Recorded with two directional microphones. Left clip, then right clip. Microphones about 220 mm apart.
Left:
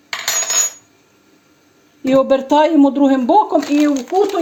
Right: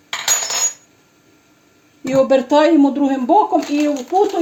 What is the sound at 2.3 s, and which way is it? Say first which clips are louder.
Speech: even; 30° left (ahead or behind).